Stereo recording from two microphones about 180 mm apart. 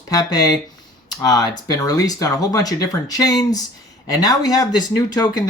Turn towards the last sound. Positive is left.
turn(degrees=20)  # may be behind; listen again after turning